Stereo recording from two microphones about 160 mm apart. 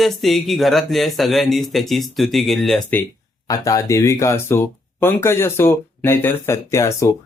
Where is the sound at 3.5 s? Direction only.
20° left (ahead or behind).